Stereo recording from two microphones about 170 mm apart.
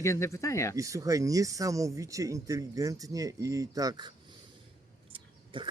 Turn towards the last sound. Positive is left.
turn(degrees=-30)  # may be behind; listen again after turning